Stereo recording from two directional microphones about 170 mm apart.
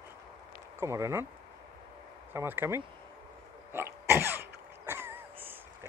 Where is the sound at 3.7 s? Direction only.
15° right (ahead or behind).